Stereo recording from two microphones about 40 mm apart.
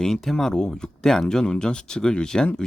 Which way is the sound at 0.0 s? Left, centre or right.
Centre.